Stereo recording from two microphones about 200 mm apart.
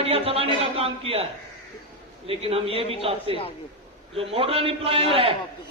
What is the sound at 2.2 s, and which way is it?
Speech, 30° right (ahead or behind).